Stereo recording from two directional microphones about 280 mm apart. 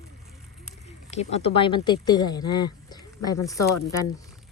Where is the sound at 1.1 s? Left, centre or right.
Left.